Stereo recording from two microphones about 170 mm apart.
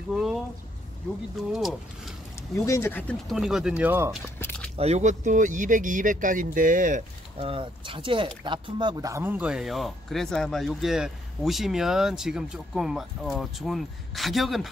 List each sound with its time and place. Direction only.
0.1 s speech: centre (ahead or behind)
1.5 s speech: centre (ahead or behind)
2.6 s speech: 15° left (ahead or behind); by 4.1 s 10° right (ahead or behind)
4.7 s speech: 40° right (ahead or behind)
7.3 s speech: 30° right (ahead or behind); by 14.7 s centre (ahead or behind)